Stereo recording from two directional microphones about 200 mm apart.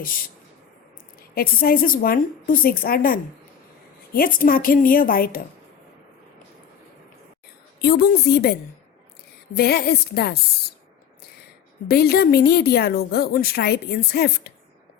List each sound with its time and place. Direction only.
0.0 s a woman's voice: 45° left (ahead or behind)
1.4 s a woman's voice: 45° left (ahead or behind)
7.8 s a woman's voice: 50° left (ahead or behind)
9.6 s a woman's voice: 50° left (ahead or behind)
11.9 s a woman's voice: 50° left (ahead or behind)